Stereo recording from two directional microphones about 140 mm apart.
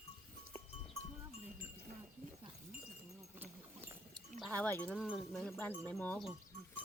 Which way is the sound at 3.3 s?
15° right (ahead or behind).